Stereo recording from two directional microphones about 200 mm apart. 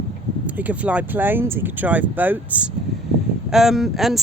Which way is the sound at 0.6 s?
5° right (ahead or behind).